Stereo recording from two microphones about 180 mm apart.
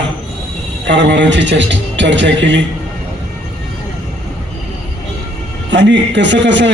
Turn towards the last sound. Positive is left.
turn(degrees=-80)